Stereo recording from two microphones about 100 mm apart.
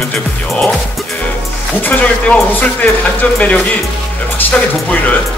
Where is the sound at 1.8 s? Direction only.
20° left (ahead or behind).